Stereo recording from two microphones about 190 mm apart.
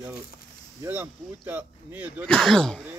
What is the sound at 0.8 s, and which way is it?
Speech, 10° right (ahead or behind).